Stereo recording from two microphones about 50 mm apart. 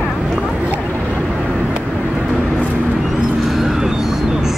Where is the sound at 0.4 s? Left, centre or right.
Right.